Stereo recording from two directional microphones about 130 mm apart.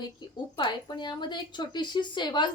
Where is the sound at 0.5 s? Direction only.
35° left (ahead or behind).